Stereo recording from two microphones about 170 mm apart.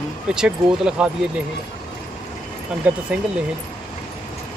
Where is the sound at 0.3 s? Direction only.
5° right (ahead or behind).